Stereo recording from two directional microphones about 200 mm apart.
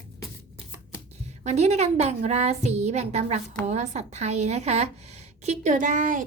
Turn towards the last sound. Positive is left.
turn(degrees=-40)  # may be behind; listen again after turning